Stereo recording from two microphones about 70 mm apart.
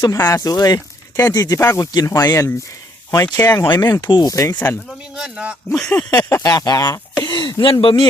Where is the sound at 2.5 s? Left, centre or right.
Left.